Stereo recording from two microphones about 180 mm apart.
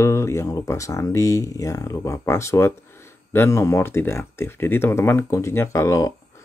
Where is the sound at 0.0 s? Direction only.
15° left (ahead or behind).